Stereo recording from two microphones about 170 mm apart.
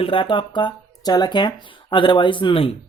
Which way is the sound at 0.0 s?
30° left (ahead or behind).